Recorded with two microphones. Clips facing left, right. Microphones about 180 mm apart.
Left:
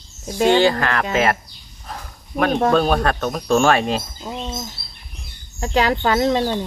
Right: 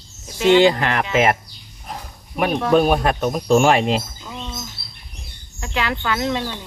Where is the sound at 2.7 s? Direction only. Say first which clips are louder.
Right 2 dB; 15° right (ahead or behind).